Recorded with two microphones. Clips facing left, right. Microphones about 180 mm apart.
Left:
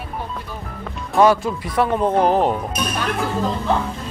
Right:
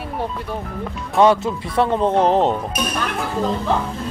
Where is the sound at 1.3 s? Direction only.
25° right (ahead or behind).